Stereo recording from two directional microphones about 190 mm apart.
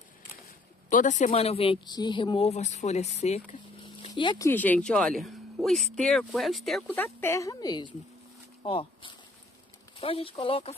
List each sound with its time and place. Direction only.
0.8 s speech: 40° left (ahead or behind); by 4.5 s 20° left (ahead or behind)
4.5 s speech: 10° left (ahead or behind)
7.2 s speech: 15° left (ahead or behind); by 10.7 s 30° left (ahead or behind)